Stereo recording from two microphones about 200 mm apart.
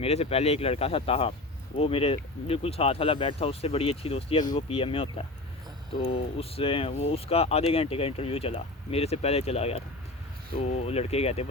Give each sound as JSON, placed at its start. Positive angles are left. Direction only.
{"t": 0.0, "sound": "speech", "side_deg": 30}